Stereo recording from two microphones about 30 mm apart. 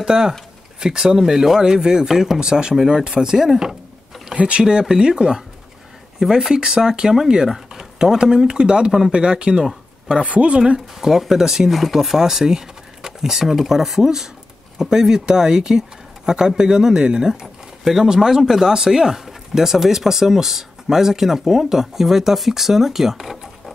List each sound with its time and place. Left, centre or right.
0.0 s speech: right
1.2 s speech: centre
2.0 s speech: centre
2.4 s speech: right
4.4 s speech: right
4.8 s speech: right
10.2 s speech: right
11.0 s speech: centre